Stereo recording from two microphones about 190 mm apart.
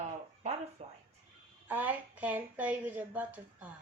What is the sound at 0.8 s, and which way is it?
Speech, 35° right (ahead or behind).